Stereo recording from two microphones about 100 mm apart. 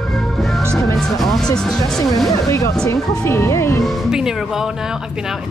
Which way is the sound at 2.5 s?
30° left (ahead or behind).